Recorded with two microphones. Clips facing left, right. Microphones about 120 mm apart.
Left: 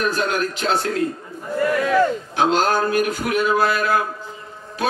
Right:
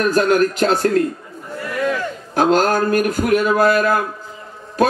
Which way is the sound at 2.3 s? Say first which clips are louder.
Right 5 dB; 45° right (ahead or behind).